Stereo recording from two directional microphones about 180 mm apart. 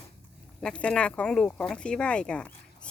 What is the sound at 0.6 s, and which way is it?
Speech, 5° left (ahead or behind).